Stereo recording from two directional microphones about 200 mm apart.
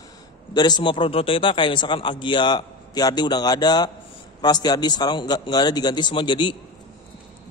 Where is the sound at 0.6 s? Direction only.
20° left (ahead or behind).